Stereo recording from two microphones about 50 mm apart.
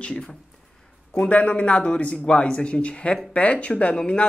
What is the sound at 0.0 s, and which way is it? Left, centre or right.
Speech, centre.